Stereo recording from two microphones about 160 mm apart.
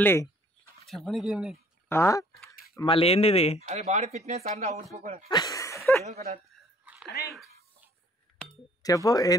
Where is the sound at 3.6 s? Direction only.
45° right (ahead or behind).